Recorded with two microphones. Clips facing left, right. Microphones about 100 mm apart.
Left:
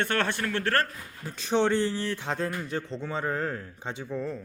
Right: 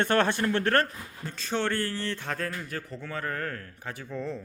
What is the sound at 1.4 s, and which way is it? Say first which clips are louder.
Speech: left 5 dB; 15° left (ahead or behind).